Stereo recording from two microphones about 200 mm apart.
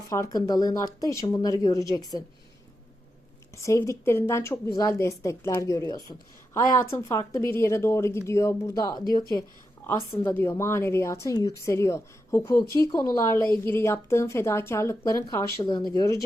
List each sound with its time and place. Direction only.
0.1 s a woman's voice: 15° left (ahead or behind)
3.6 s a woman's voice: 15° left (ahead or behind)